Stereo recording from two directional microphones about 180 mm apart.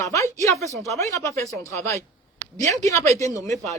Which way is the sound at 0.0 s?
15° left (ahead or behind).